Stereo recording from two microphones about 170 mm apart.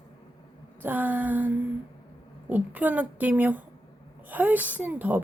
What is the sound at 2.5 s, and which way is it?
A woman's voice, 10° right (ahead or behind).